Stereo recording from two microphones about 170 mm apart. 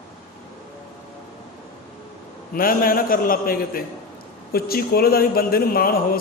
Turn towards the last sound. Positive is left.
turn(degrees=60)  # may be behind; listen again after turning